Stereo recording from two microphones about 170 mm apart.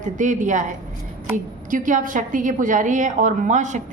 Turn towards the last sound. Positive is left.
turn(degrees=-45)  # may be behind; listen again after turning